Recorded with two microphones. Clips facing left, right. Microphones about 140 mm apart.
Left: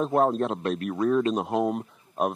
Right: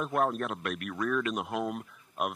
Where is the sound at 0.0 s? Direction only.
25° left (ahead or behind).